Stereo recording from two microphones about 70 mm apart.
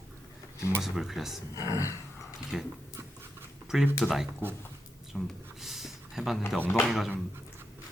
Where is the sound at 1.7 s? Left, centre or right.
Left.